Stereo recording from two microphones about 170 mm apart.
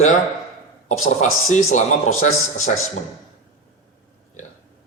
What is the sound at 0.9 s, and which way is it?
A man's voice, 45° left (ahead or behind).